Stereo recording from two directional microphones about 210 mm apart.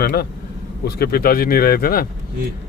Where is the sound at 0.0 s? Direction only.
50° left (ahead or behind).